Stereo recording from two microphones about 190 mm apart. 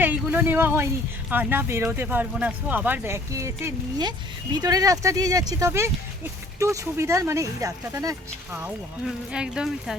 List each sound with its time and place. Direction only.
0.0 s speech: 10° right (ahead or behind)